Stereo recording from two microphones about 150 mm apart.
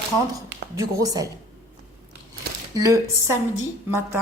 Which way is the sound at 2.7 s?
20° right (ahead or behind).